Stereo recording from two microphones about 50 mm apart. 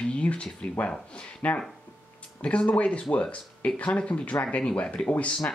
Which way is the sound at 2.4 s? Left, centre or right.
Left.